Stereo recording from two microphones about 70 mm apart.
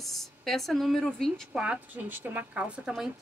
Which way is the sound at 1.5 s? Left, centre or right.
Centre.